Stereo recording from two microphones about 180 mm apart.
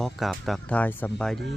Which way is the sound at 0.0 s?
Centre (ahead or behind).